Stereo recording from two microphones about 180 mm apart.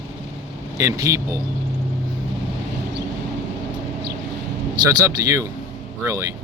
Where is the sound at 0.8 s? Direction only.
15° right (ahead or behind).